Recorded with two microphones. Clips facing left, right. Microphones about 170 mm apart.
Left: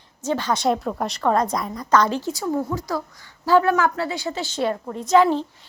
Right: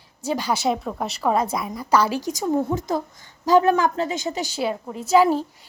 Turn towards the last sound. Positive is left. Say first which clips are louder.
# even
turn(degrees=-10)  # may be behind; listen again after turning